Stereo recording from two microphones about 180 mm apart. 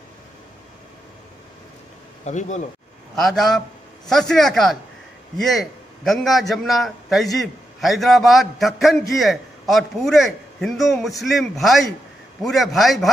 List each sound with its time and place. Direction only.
2.2 s speech: 40° left (ahead or behind)
3.2 s a man's voice: centre (ahead or behind)